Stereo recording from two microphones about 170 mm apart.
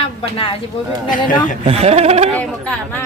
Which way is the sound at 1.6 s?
40° right (ahead or behind).